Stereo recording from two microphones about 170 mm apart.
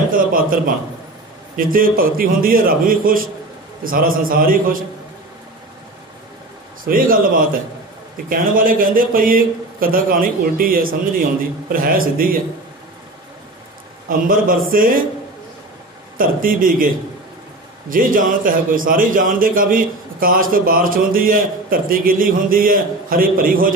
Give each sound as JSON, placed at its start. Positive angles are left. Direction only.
{"t": 0.1, "sound": "a sound", "side_deg": -55}
{"t": 1.6, "sound": "a man's voice", "side_deg": -55}
{"t": 6.8, "sound": "a man's voice", "side_deg": -55}
{"t": 14.0, "sound": "a man's voice", "side_deg": -55}
{"t": 16.2, "sound": "a man's voice", "side_deg": -55}